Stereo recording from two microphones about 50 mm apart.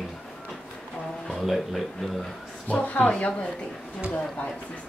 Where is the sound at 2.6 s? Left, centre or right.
Left.